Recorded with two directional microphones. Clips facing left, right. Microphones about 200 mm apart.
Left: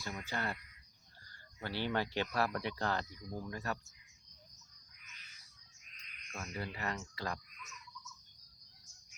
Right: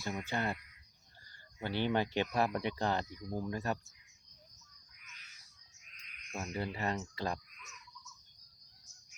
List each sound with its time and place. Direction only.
0.3 s speech: 20° right (ahead or behind)
1.6 s speech: 20° right (ahead or behind)
6.3 s speech: 35° right (ahead or behind)